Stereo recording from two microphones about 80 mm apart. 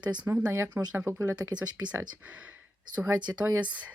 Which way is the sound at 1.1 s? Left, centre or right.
Right.